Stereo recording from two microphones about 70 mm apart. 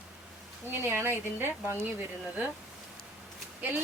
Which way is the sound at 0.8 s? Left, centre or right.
Right.